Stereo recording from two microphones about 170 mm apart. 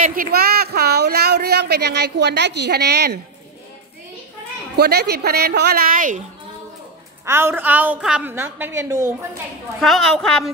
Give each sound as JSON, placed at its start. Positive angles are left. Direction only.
{"t": 0.0, "sound": "speech", "side_deg": -55}
{"t": 4.7, "sound": "a woman's voice", "side_deg": -75}
{"t": 7.2, "sound": "a woman's voice", "side_deg": -15}
{"t": 9.8, "sound": "a woman's voice", "side_deg": 0}